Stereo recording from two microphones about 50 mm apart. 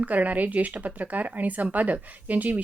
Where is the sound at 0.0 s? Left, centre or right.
Right.